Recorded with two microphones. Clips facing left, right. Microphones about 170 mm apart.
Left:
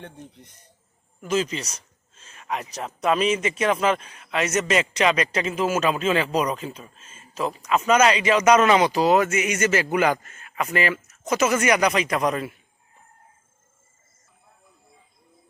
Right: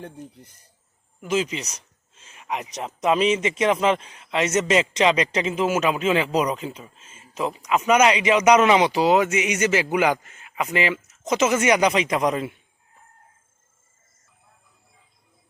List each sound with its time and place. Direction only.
0.0 s a man's voice: 5° right (ahead or behind)